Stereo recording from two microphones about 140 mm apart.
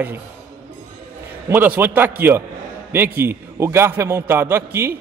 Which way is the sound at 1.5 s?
15° right (ahead or behind).